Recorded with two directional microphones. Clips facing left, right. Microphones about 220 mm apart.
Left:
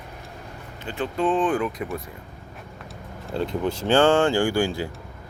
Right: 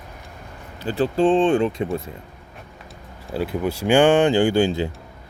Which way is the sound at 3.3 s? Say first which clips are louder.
Right 1 dB; 5° right (ahead or behind).